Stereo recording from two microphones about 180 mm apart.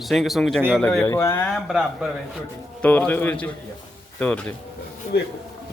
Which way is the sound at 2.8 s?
10° left (ahead or behind).